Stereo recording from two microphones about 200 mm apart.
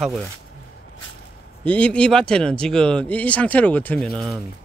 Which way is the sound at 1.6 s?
5° left (ahead or behind).